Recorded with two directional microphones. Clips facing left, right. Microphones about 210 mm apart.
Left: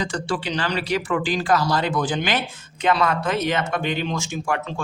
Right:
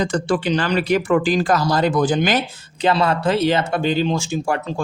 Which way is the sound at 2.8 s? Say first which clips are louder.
Right 3 dB; 30° right (ahead or behind).